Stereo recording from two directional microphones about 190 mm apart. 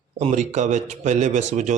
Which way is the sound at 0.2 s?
35° right (ahead or behind).